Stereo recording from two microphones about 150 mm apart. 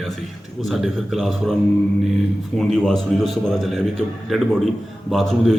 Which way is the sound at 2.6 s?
Centre (ahead or behind).